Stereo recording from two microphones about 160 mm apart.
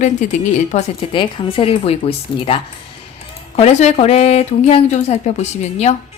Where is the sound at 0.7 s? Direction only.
35° left (ahead or behind).